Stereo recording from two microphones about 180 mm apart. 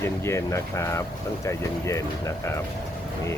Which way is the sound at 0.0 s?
15° left (ahead or behind).